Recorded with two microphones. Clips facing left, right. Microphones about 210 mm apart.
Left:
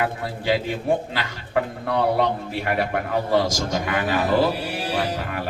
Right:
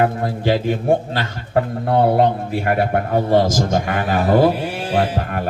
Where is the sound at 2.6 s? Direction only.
45° right (ahead or behind).